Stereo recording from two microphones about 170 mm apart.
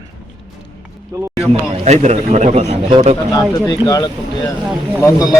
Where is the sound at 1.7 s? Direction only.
40° right (ahead or behind).